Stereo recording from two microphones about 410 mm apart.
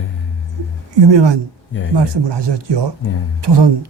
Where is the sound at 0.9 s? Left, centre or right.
Right.